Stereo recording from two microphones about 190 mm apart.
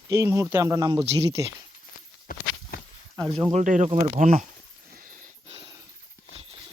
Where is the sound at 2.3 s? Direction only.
50° left (ahead or behind).